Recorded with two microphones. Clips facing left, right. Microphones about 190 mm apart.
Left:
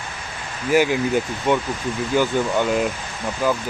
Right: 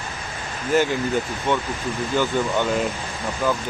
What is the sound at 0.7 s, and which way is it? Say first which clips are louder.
Speech: left 2 dB; 10° left (ahead or behind).